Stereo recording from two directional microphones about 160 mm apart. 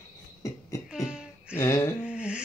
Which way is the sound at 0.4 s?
20° left (ahead or behind).